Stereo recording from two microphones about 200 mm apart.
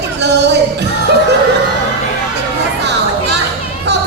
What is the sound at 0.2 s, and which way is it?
Music, 55° right (ahead or behind).